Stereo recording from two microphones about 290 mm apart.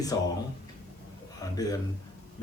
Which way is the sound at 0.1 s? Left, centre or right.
Centre.